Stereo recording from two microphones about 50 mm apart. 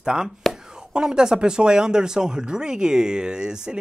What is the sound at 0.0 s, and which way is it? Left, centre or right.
Speech, centre.